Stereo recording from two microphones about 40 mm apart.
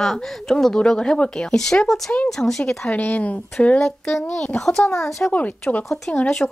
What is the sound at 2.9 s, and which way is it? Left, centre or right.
Speech, left.